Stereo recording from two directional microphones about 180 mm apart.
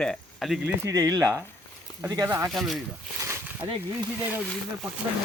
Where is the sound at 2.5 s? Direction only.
Centre (ahead or behind).